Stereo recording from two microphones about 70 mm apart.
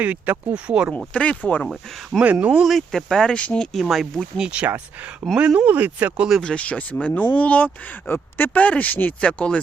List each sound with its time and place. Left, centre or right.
0.0 s speech: right
0.9 s speech: centre
1.6 s speech: centre
2.2 s speech: centre
2.6 s speech: centre
3.7 s speech: centre
4.4 s speech: centre
6.4 s speech: centre